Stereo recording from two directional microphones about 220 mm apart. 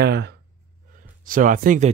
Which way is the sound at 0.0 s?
50° right (ahead or behind).